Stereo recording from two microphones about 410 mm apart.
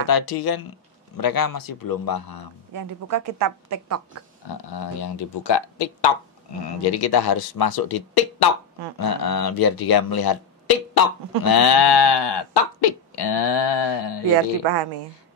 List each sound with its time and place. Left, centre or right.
0.0 s speech: left
2.7 s a woman's voice: right
4.6 s speech: left